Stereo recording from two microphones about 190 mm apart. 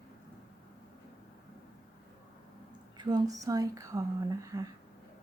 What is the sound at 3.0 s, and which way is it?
Speech, 20° right (ahead or behind).